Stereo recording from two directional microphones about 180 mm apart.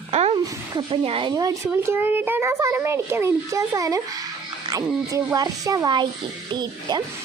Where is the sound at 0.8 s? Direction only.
30° right (ahead or behind).